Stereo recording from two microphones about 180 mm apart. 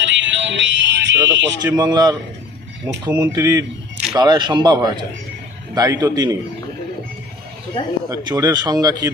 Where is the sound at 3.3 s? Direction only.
20° right (ahead or behind).